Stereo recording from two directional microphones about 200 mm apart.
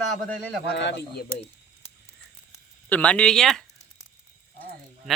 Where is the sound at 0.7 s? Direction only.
60° left (ahead or behind).